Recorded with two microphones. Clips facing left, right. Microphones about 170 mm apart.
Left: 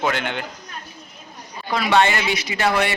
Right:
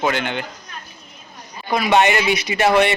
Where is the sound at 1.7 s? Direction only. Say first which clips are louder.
Right 2 dB; 15° right (ahead or behind).